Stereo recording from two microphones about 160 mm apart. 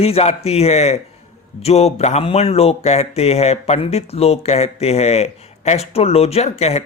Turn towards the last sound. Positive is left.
turn(degrees=40)  # may be behind; listen again after turning